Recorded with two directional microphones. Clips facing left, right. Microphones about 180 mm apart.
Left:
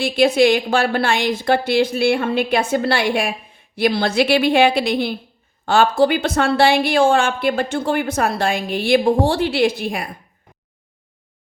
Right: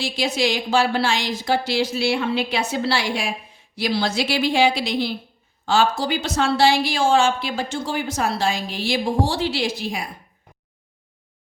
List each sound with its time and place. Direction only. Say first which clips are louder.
0.0 s speech: left 8 dB; 55° left (ahead or behind)